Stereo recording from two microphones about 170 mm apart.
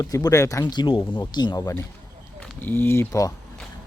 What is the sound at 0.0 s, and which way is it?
A man's voice, 20° left (ahead or behind).